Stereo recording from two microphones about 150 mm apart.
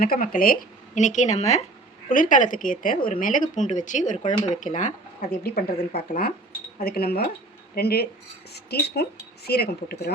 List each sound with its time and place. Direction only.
0.0 s speech: 70° left (ahead or behind); by 1.6 s 50° left (ahead or behind)
2.0 s speech: 65° left (ahead or behind)
5.4 s speech: 90° left
6.1 s speech: 80° left